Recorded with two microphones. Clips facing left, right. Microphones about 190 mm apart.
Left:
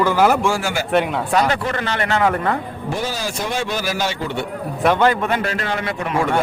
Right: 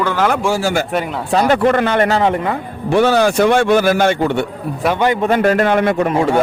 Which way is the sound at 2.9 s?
65° right (ahead or behind).